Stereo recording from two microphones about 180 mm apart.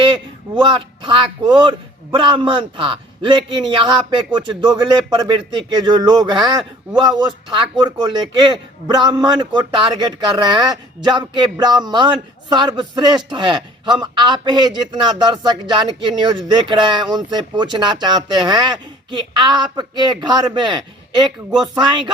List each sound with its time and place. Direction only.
0.0 s speech: 25° right (ahead or behind)